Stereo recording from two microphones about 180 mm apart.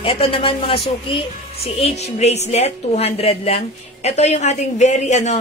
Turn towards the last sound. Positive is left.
turn(degrees=40)  # may be behind; listen again after turning